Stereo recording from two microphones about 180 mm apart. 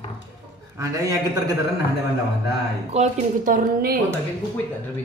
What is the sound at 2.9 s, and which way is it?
Speech, 45° right (ahead or behind).